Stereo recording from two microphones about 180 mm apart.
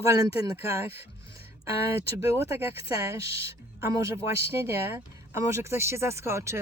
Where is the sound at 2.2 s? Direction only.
15° right (ahead or behind).